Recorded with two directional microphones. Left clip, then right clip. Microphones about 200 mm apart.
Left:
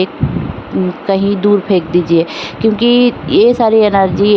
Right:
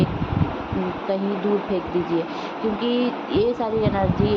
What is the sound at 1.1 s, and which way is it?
A woman's voice, 55° left (ahead or behind).